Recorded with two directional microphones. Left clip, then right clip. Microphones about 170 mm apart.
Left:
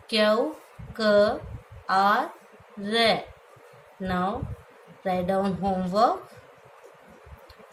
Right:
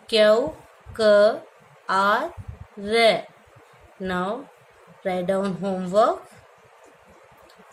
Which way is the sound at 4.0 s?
40° right (ahead or behind).